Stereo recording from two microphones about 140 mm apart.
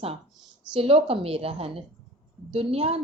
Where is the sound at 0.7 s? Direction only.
40° right (ahead or behind).